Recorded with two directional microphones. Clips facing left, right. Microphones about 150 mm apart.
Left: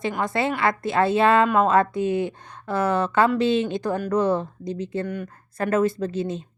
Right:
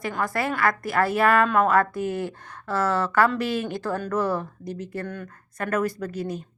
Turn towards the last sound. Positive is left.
turn(degrees=25)  # may be behind; listen again after turning